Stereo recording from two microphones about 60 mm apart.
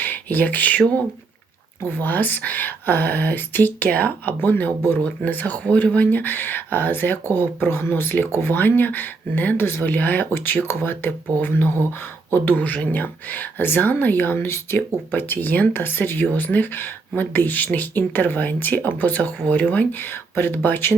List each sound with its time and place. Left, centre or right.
0.0 s speech: left
1.9 s speech: left
10.3 s speech: left
14.4 s speech: left
15.1 s speech: left